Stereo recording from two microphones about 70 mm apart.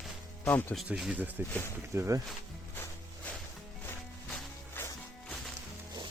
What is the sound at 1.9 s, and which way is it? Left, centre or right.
Speech, right.